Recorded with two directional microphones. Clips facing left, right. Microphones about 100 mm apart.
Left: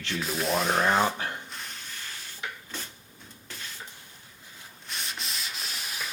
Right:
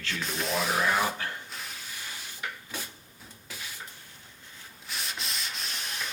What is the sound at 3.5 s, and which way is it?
Beatboxing, 5° right (ahead or behind).